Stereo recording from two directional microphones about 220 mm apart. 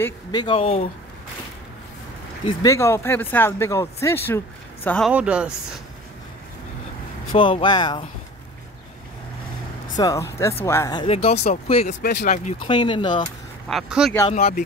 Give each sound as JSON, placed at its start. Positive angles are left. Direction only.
{"t": 0.0, "sound": "speech", "side_deg": 20}
{"t": 2.4, "sound": "speech", "side_deg": 15}
{"t": 7.3, "sound": "speech", "side_deg": 25}
{"t": 9.9, "sound": "speech", "side_deg": 15}
{"t": 12.0, "sound": "speech", "side_deg": 40}
{"t": 12.6, "sound": "speech", "side_deg": 20}
{"t": 13.7, "sound": "speech", "side_deg": 0}
{"t": 14.3, "sound": "speech", "side_deg": 40}